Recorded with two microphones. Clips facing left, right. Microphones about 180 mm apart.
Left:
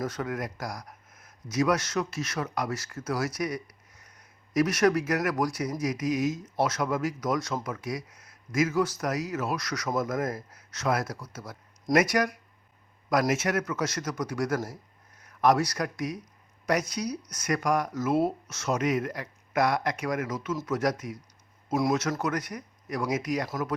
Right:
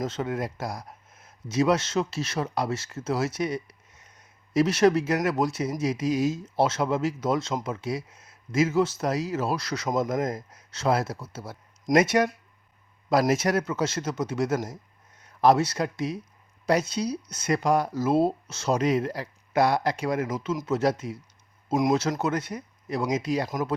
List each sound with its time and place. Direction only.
0.0 s speech: 25° right (ahead or behind)
23.5 s speech: 15° right (ahead or behind)